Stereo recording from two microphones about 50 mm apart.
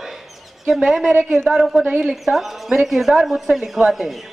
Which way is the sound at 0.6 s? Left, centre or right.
Centre.